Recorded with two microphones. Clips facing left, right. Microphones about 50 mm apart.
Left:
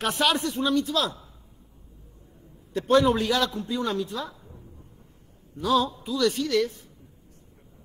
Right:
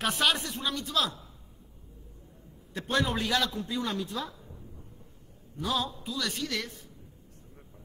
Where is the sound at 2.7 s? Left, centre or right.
Centre.